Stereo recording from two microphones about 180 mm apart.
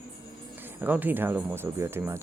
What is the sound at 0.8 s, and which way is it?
Speech, 10° right (ahead or behind).